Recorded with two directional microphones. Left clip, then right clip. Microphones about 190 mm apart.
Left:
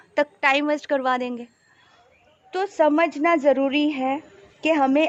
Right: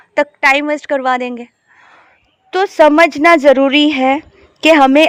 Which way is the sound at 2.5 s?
50° right (ahead or behind).